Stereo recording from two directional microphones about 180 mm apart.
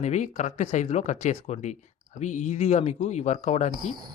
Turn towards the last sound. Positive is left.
turn(degrees=40)  # may be behind; listen again after turning